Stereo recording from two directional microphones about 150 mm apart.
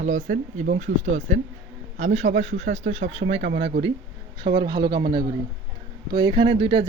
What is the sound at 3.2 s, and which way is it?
Speech, 80° right.